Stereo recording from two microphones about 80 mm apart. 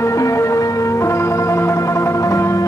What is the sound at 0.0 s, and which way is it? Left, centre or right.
Music, left.